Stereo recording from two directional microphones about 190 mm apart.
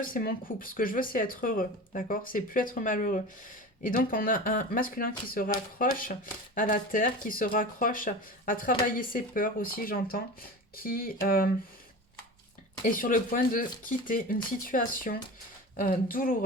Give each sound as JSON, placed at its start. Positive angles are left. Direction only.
{"t": 0.0, "sound": "speech", "side_deg": 50}
{"t": 12.8, "sound": "speech", "side_deg": 45}